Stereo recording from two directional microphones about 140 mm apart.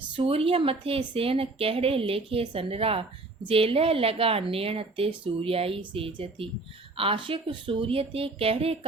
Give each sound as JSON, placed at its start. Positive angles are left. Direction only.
{"t": 0.2, "sound": "speech", "side_deg": -40}